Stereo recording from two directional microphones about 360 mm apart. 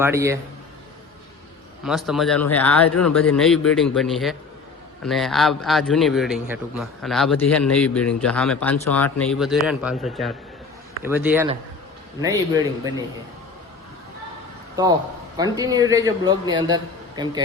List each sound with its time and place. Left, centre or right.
0.0 s a man's voice: centre
1.8 s a man's voice: centre
15.5 s a man's voice: centre